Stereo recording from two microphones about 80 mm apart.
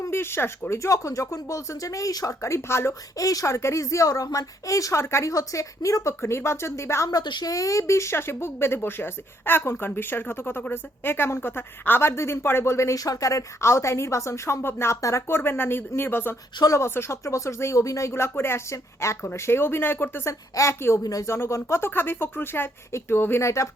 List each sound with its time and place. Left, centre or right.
0.1 s speech: left
3.2 s speech: left
7.1 s speech: left
7.5 s speech: left
15.4 s speech: left
20.6 s speech: left